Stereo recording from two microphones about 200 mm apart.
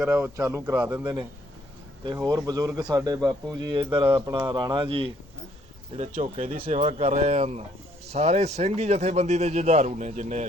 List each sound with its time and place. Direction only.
0.0 s a man's voice: 10° right (ahead or behind); by 5.1 s 25° right (ahead or behind)
5.9 s speech: 35° right (ahead or behind)